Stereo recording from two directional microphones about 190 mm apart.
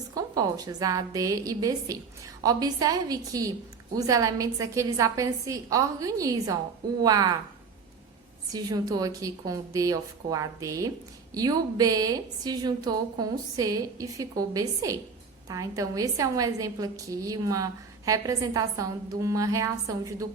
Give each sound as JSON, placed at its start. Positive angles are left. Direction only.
{"t": 0.1, "sound": "a woman's voice", "side_deg": -20}
{"t": 8.5, "sound": "a woman's voice", "side_deg": -20}